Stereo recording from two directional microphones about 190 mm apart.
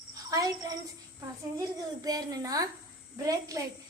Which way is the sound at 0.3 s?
20° right (ahead or behind).